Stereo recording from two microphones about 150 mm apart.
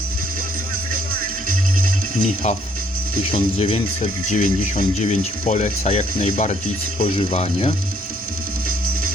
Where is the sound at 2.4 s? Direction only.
50° left (ahead or behind).